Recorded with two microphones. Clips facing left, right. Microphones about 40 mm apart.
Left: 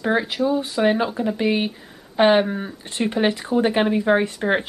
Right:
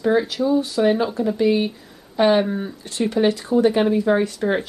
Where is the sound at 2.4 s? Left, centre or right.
Centre.